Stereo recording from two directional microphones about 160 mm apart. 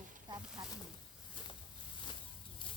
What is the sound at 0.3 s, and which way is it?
Snake, 25° right (ahead or behind).